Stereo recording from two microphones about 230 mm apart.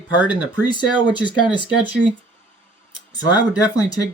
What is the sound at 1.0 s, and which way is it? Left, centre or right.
Speech, centre.